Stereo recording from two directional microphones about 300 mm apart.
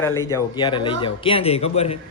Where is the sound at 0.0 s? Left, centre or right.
Centre.